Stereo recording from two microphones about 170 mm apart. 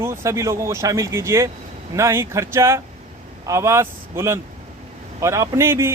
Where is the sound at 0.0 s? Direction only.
15° right (ahead or behind).